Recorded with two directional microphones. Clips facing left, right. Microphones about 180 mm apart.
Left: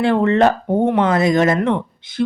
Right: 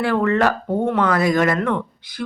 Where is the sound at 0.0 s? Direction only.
25° left (ahead or behind).